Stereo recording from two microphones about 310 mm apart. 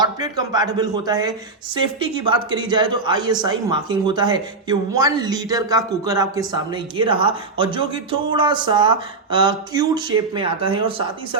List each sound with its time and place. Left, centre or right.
0.0 s speech: centre